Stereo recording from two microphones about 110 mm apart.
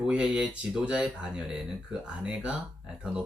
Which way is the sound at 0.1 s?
10° right (ahead or behind).